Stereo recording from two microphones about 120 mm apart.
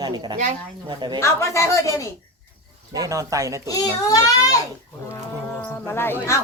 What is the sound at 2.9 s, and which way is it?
Speech, 30° right (ahead or behind).